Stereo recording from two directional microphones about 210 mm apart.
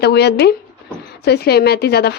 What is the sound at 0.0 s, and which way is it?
A woman's voice, 50° left (ahead or behind).